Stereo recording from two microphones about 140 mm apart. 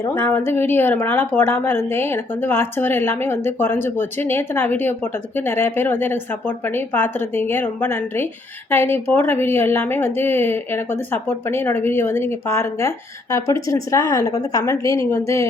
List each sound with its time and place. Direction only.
0.0 s a woman's voice: 15° left (ahead or behind)